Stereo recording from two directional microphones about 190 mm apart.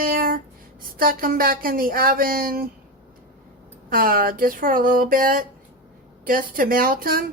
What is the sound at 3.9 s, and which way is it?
Speech, 50° right (ahead or behind).